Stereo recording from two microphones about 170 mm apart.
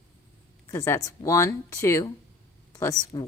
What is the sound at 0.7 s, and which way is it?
Speech, 20° left (ahead or behind).